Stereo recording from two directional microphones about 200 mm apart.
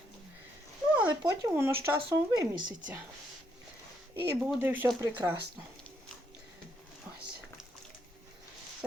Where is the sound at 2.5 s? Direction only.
45° right (ahead or behind).